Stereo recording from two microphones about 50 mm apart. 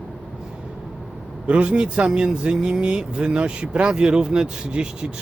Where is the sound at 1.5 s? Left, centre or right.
Right.